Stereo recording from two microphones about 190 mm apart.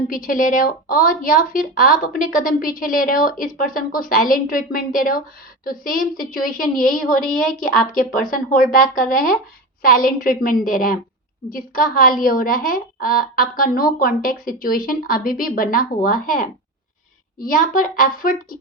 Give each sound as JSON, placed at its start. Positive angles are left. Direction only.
{"t": 0.1, "sound": "a woman's voice", "side_deg": 45}
{"t": 8.3, "sound": "a woman's voice", "side_deg": 45}